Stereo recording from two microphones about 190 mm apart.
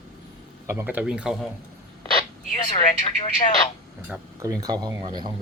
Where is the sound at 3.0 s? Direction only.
25° left (ahead or behind).